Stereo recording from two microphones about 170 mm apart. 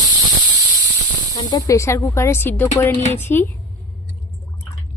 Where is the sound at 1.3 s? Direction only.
20° left (ahead or behind).